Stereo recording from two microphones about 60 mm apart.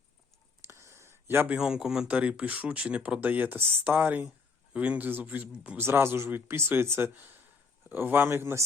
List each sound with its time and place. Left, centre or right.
0.7 s a sound: right
1.5 s speech: centre
2.0 s speech: right
3.2 s speech: right
5.7 s speech: right